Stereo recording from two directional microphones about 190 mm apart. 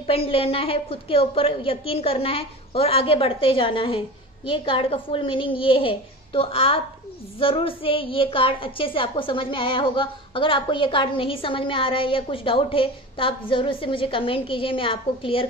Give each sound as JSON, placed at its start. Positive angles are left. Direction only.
{"t": 0.0, "sound": "a woman's voice", "side_deg": 30}